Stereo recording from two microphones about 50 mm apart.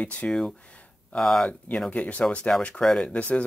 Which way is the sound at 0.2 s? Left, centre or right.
Left.